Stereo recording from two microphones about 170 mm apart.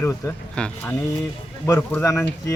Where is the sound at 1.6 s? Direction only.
15° left (ahead or behind).